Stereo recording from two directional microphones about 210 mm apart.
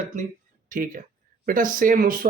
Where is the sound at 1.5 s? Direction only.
40° right (ahead or behind).